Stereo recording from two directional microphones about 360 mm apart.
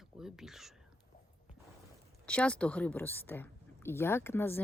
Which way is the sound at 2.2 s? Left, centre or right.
Centre.